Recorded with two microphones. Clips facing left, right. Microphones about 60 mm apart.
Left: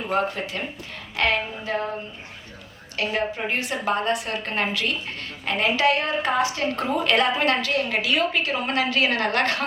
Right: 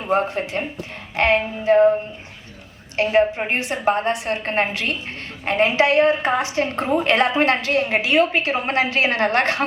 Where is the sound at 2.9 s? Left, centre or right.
Right.